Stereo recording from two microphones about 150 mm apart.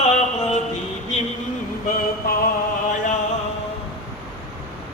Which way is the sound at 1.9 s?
80° left.